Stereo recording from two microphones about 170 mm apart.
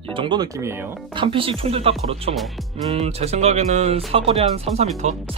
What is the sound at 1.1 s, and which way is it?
Speech, 30° right (ahead or behind).